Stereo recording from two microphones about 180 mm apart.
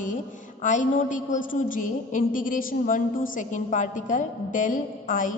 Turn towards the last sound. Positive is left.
turn(degrees=50)  # may be behind; listen again after turning